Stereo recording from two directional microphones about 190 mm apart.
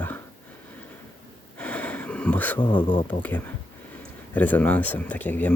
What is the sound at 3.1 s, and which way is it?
Speech, 10° left (ahead or behind).